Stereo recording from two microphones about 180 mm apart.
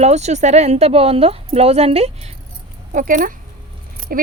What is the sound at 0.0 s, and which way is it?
Speech, 40° right (ahead or behind).